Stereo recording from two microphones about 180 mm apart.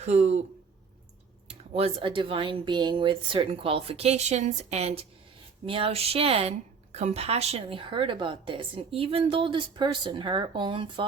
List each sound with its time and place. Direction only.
0.0 s speech: 35° right (ahead or behind)
1.5 s a woman's voice: 30° right (ahead or behind)